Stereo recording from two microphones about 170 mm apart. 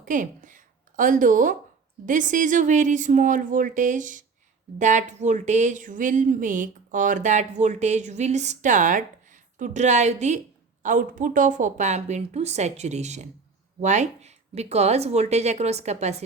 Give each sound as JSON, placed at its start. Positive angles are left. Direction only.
{"t": 0.0, "sound": "speech", "side_deg": -50}